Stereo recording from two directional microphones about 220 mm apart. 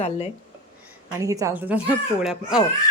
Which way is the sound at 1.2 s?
15° right (ahead or behind).